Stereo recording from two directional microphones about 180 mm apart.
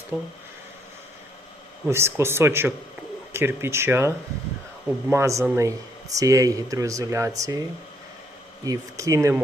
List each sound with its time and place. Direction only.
0.1 s speech: 15° right (ahead or behind)
1.9 s speech: 15° right (ahead or behind)
8.6 s speech: 20° right (ahead or behind)